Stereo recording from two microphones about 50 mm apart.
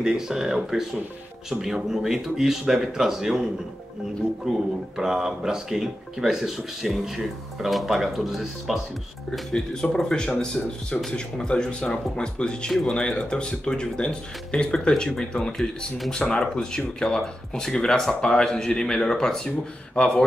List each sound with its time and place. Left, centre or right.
0.0 s speech: centre
4.5 s speech: centre
9.9 s speech: centre
20.0 s speech: left